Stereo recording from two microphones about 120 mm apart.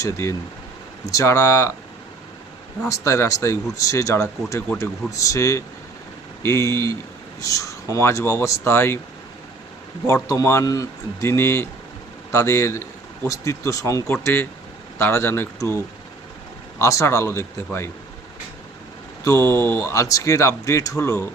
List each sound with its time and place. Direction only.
0.0 s speech: 25° left (ahead or behind)
2.8 s speech: 25° left (ahead or behind)
10.4 s speech: 25° left (ahead or behind)
16.7 s speech: 25° left (ahead or behind)
19.2 s speech: 25° left (ahead or behind)